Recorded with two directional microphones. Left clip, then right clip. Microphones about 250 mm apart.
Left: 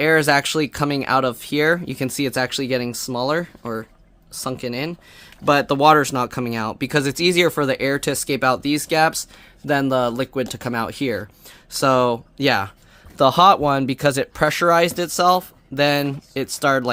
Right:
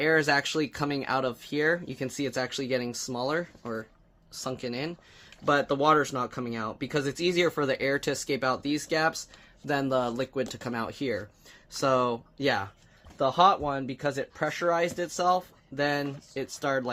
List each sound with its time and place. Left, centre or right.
0.0 s speech: left
13.1 s speech: left